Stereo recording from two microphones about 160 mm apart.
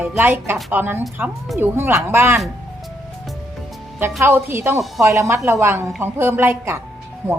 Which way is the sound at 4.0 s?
15° right (ahead or behind).